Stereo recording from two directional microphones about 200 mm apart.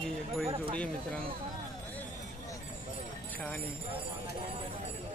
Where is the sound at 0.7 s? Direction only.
5° left (ahead or behind).